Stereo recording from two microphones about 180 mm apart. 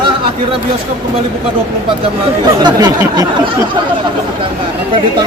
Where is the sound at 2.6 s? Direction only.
25° right (ahead or behind).